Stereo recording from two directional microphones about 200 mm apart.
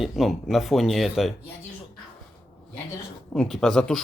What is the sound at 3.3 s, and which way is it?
Speech, centre (ahead or behind).